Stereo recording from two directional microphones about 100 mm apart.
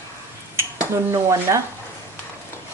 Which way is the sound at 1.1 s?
30° right (ahead or behind).